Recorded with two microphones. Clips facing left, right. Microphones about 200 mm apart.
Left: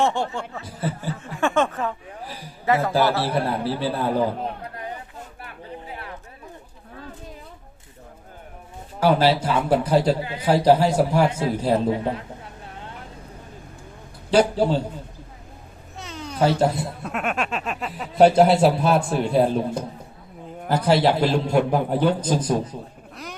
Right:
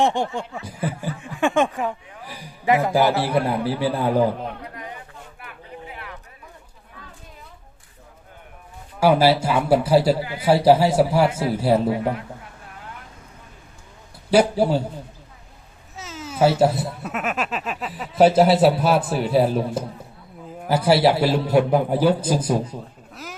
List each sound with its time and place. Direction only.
0.0 s a man's voice: 15° right (ahead or behind)
5.9 s chatter: 35° left (ahead or behind)
9.0 s a man's voice: 10° right (ahead or behind)
12.7 s vehicle: 30° left (ahead or behind)
14.3 s a man's voice: 10° right (ahead or behind)
16.0 s a man's voice: centre (ahead or behind)